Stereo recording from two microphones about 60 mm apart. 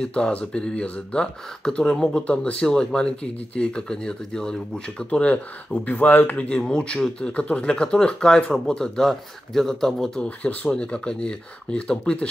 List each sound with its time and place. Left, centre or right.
0.0 s speech: centre
10.2 s speech: left
10.7 s speech: centre